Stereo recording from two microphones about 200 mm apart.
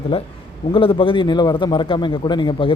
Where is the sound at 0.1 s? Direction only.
30° left (ahead or behind).